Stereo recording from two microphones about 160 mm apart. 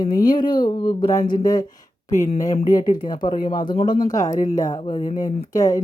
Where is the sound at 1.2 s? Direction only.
55° left (ahead or behind).